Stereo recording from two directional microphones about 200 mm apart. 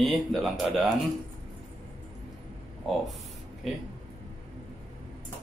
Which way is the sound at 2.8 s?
Centre (ahead or behind).